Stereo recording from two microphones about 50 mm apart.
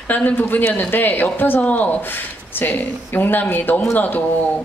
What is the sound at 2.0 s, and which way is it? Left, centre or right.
Speech, left.